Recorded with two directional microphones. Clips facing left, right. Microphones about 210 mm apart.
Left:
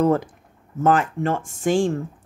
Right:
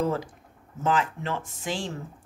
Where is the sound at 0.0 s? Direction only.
55° left (ahead or behind).